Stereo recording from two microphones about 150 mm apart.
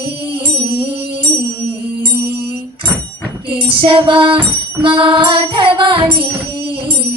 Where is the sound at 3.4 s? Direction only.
35° right (ahead or behind).